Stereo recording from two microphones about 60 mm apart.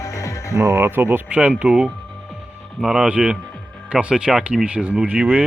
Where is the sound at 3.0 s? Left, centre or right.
Right.